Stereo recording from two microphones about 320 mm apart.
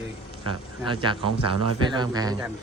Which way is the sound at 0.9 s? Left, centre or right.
Centre.